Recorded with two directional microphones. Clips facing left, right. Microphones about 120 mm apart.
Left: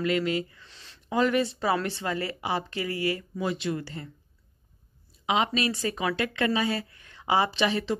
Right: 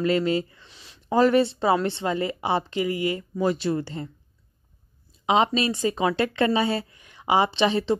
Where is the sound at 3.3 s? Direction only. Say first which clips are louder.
Right 6 dB; 40° right (ahead or behind).